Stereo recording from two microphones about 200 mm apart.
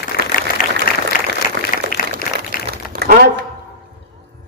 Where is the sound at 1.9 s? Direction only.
55° left (ahead or behind).